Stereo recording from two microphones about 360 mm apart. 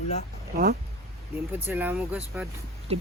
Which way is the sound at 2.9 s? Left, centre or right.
Centre.